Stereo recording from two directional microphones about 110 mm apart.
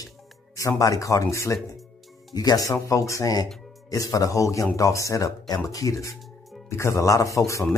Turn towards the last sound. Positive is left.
turn(degrees=30)  # may be behind; listen again after turning